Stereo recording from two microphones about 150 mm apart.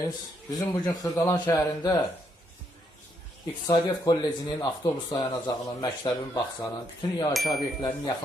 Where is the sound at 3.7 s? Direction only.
25° left (ahead or behind).